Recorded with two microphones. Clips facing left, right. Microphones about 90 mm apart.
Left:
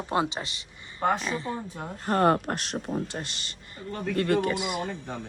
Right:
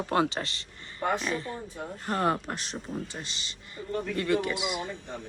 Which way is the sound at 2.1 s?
55° left (ahead or behind).